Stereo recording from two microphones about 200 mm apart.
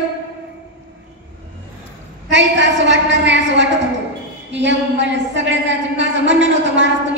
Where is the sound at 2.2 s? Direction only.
65° right (ahead or behind).